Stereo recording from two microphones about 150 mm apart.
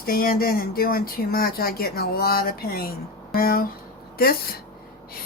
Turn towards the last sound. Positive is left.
turn(degrees=90)